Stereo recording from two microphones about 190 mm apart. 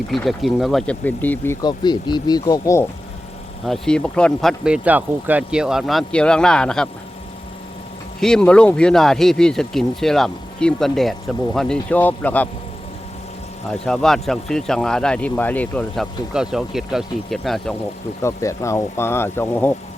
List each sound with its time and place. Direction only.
0.1 s speech: centre (ahead or behind)
1.6 s speech: 25° left (ahead or behind)
3.7 s speech: 5° left (ahead or behind)
8.2 s speech: 5° left (ahead or behind)
13.7 s speech: 5° left (ahead or behind)
18.2 s speech: 15° left (ahead or behind)